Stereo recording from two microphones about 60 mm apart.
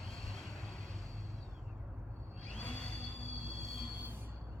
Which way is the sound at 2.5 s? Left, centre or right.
Left.